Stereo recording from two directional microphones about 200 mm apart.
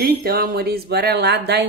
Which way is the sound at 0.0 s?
50° right (ahead or behind).